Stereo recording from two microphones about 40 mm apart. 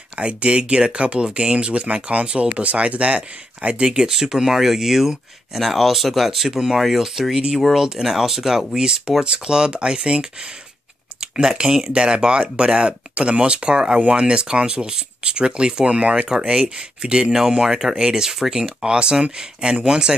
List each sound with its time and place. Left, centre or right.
0.2 s speech: right; by 6.5 s centre
6.5 s speech: centre